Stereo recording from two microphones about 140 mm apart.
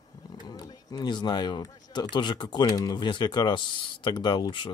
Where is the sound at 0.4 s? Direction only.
30° left (ahead or behind).